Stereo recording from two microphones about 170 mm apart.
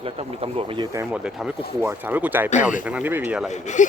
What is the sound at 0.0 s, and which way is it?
Speech, 35° right (ahead or behind).